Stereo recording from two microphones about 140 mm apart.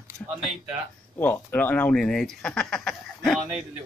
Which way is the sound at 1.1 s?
15° left (ahead or behind).